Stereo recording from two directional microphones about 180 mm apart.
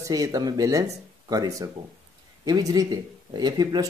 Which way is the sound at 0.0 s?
20° right (ahead or behind).